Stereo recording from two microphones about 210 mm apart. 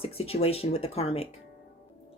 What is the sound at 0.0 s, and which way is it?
A woman's voice, 25° left (ahead or behind).